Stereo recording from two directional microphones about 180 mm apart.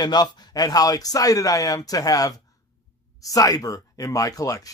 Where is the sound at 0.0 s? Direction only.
25° left (ahead or behind).